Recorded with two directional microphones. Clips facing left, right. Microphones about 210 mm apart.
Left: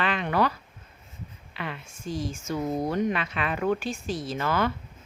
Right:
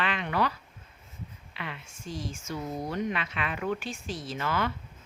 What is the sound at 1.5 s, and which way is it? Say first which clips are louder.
A woman's voice: left 5 dB; 45° left (ahead or behind).